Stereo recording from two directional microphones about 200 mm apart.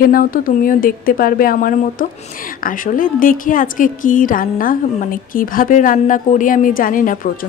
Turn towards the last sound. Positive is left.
turn(degrees=45)  # may be behind; listen again after turning